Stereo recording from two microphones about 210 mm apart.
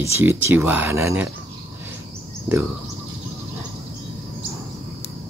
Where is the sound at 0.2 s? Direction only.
10° right (ahead or behind).